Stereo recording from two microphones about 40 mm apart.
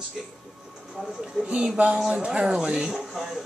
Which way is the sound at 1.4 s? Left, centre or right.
Centre.